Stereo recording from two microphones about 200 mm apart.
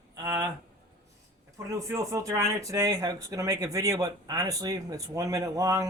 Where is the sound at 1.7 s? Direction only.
15° right (ahead or behind).